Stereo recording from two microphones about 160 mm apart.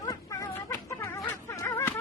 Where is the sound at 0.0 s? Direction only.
20° left (ahead or behind).